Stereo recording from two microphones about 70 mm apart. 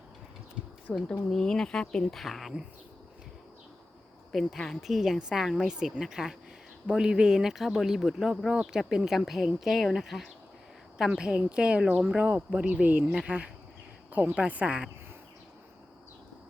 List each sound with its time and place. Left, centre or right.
0.9 s speech: centre
4.3 s a woman's voice: centre